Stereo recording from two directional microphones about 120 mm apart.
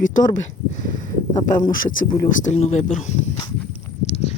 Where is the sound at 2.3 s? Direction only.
75° left (ahead or behind).